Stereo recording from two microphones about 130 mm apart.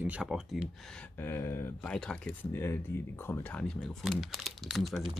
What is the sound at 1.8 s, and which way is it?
Speech, 5° left (ahead or behind).